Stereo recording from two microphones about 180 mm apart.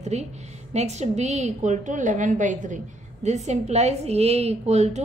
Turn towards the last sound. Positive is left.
turn(degrees=-40)  # may be behind; listen again after turning